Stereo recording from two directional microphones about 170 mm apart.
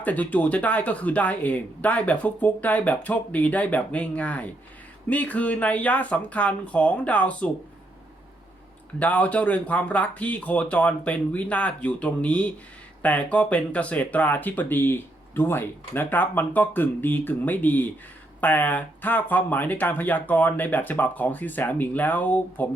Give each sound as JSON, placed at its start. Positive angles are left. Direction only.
{"t": 0.0, "sound": "speech", "side_deg": 10}
{"t": 9.0, "sound": "speech", "side_deg": 10}